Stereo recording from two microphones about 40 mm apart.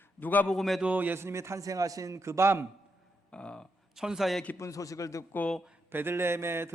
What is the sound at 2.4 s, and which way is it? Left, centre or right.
Speech, right.